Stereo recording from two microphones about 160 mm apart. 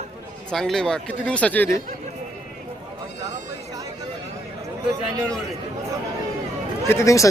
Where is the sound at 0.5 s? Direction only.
Centre (ahead or behind).